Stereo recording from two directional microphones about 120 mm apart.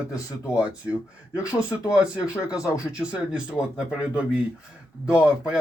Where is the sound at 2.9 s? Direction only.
10° right (ahead or behind).